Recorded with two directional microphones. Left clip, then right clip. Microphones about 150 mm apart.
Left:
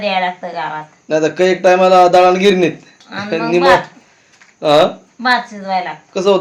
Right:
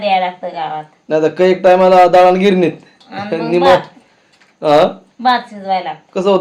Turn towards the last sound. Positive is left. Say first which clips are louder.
# even
turn(degrees=-10)  # may be behind; listen again after turning